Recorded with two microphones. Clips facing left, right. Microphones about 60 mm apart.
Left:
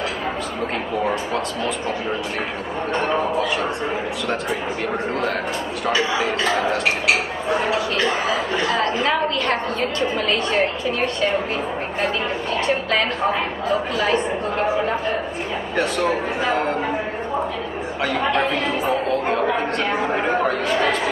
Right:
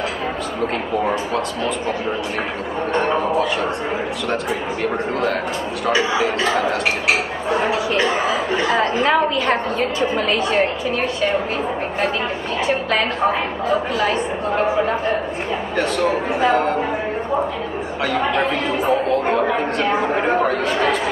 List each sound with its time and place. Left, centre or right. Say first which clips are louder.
7.6 s speech: right 4 dB; centre
8.7 s a woman's voice: right 5 dB; centre
12.6 s a woman's voice: right 2 dB; centre
15.7 s a man's voice: right 1 dB; centre
18.0 s a woman's voice: right 1 dB; centre